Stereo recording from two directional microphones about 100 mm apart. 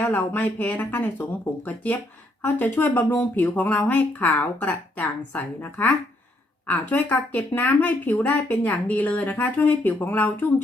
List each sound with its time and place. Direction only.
0.0 s speech: 15° left (ahead or behind)